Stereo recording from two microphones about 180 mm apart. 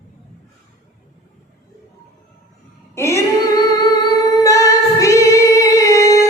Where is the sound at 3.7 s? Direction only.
20° left (ahead or behind).